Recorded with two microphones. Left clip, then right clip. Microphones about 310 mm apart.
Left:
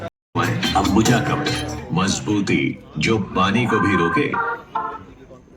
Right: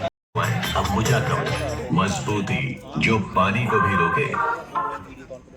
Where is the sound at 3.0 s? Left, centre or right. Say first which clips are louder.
Even; left.